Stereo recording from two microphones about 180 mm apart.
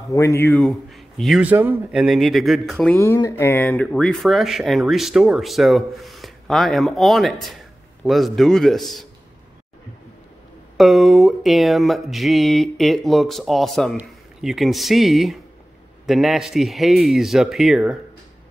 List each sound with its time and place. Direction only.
0.1 s speech: 15° left (ahead or behind)
0.5 s a man's voice: centre (ahead or behind)
1.4 s speech: 10° right (ahead or behind)
2.9 s speech: 15° left (ahead or behind)
3.6 s speech: 5° left (ahead or behind)
10.8 s speech: centre (ahead or behind)